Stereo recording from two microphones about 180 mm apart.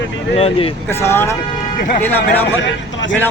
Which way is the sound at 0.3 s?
35° left (ahead or behind).